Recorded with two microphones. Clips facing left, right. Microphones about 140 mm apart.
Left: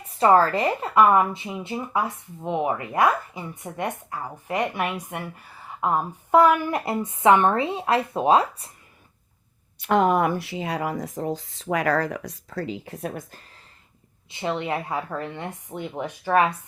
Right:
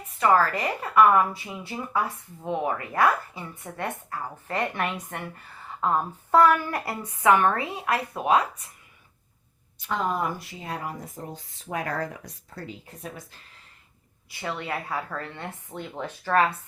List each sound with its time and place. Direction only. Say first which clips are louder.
0.0 s a woman's voice: left 4 dB; 30° left (ahead or behind)
9.7 s speech: left 8 dB; 65° left (ahead or behind)
14.3 s a woman's voice: left 5 dB; 20° left (ahead or behind)